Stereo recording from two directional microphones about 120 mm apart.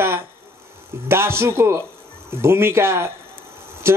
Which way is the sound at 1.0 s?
20° right (ahead or behind).